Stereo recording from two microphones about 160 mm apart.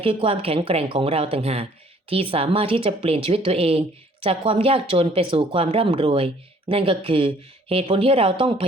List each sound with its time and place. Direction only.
0.0 s a woman's voice: 35° right (ahead or behind)